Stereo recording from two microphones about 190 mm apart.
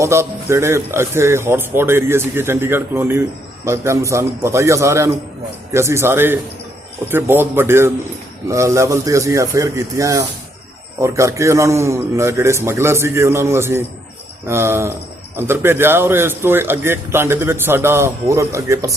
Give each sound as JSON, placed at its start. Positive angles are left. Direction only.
{"t": 0.0, "sound": "a man's voice", "side_deg": -15}